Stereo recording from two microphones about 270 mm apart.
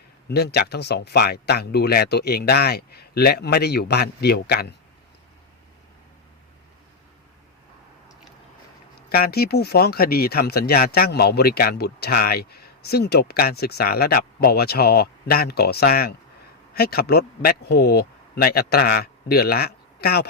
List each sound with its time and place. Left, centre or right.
0.3 s speech: left
9.0 s a man's voice: left